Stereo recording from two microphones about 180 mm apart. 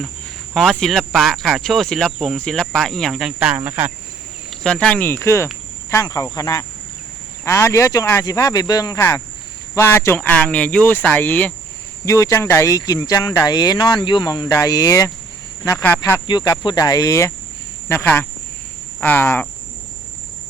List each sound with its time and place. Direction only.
0.5 s speech: centre (ahead or behind)
4.6 s speech: 5° left (ahead or behind)